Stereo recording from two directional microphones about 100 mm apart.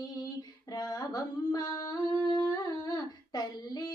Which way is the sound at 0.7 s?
40° left (ahead or behind).